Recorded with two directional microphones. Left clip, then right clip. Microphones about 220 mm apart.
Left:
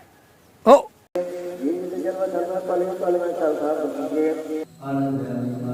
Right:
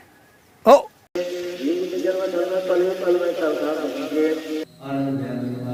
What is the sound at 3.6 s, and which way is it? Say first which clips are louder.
A man's voice: even; 45° left (ahead or behind).